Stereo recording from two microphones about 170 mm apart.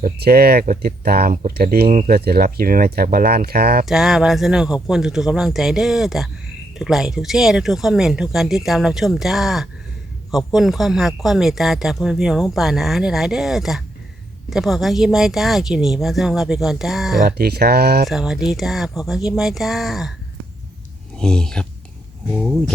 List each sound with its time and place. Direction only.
0.0 s speech: 65° right (ahead or behind)
0.6 s speech: 55° right (ahead or behind)
3.8 s speech: centre (ahead or behind)
17.2 s speech: 65° right (ahead or behind)
18.1 s speech: 5° right (ahead or behind)
21.2 s speech: 5° left (ahead or behind)